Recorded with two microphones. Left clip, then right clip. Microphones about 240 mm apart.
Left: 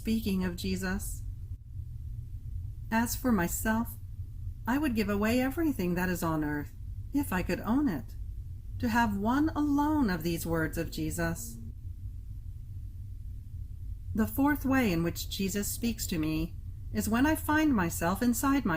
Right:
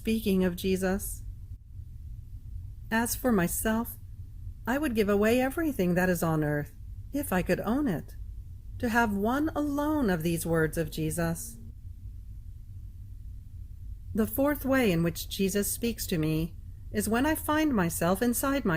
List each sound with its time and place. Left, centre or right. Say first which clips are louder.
0.0 s speech: right 5 dB; right
2.9 s a woman's voice: right 2 dB; right
14.2 s speech: right 2 dB; right